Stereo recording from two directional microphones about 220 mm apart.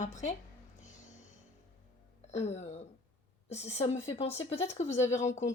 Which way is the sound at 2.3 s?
30° left (ahead or behind).